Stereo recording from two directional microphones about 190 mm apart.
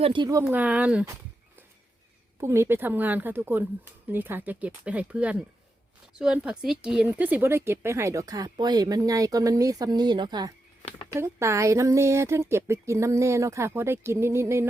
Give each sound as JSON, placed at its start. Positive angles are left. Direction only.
{"t": 0.0, "sound": "speech", "side_deg": -25}
{"t": 2.4, "sound": "speech", "side_deg": -15}
{"t": 10.8, "sound": "a sound", "side_deg": 25}
{"t": 11.1, "sound": "speech", "side_deg": -15}